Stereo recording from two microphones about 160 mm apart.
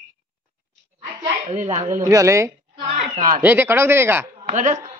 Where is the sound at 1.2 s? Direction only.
45° right (ahead or behind).